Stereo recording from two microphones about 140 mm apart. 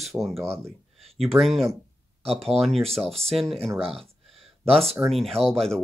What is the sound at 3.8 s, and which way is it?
Speech, 45° right (ahead or behind).